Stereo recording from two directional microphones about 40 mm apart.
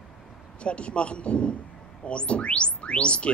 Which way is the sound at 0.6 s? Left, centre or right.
Left.